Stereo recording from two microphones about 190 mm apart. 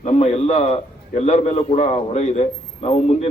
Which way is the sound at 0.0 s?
35° left (ahead or behind).